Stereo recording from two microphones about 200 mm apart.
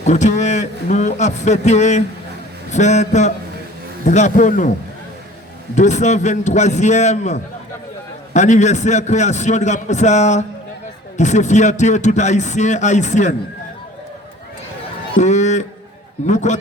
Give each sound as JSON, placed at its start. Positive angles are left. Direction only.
{"t": 0.0, "sound": "a man's voice", "side_deg": 35}
{"t": 5.7, "sound": "a man's voice", "side_deg": 35}
{"t": 15.1, "sound": "a man's voice", "side_deg": 35}